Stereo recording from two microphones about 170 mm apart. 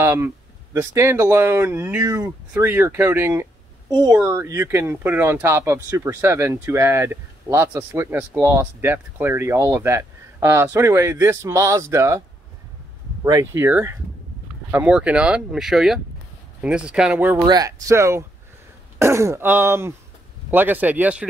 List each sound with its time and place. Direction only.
0.0 s speech: 15° right (ahead or behind)
13.2 s speech: 15° right (ahead or behind)
17.5 s speech: 20° right (ahead or behind)